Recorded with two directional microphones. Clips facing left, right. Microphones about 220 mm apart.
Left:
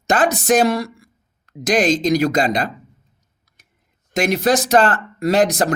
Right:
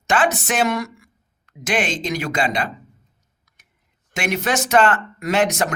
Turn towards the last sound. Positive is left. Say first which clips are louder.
# left 4 dB
turn(degrees=35)  # may be behind; listen again after turning